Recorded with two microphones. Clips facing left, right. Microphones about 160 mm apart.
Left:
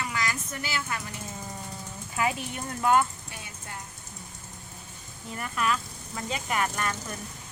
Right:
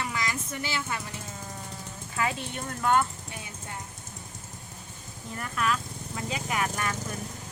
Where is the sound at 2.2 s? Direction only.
15° left (ahead or behind).